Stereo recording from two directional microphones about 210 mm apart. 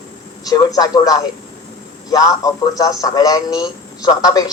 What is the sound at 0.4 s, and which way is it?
A man's voice, 20° left (ahead or behind).